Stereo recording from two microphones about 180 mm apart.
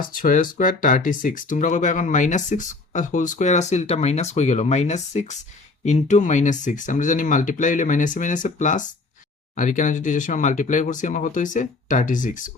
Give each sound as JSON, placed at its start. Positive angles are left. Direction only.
{"t": 0.2, "sound": "speech", "side_deg": 45}